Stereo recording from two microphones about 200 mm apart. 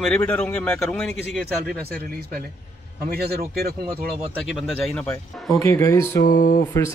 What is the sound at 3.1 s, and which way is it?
Speech, 50° right (ahead or behind).